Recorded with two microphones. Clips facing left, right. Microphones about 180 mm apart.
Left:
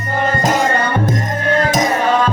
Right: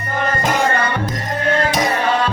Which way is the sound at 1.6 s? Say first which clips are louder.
Left 2 dB; 45° left (ahead or behind).